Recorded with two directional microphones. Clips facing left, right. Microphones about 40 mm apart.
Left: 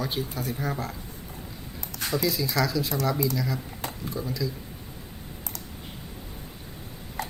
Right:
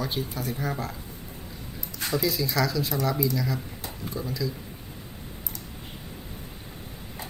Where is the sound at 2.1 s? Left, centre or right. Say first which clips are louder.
Even; centre.